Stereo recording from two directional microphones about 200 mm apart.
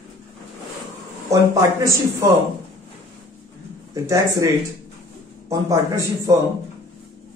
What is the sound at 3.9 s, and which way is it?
Speech, 15° right (ahead or behind).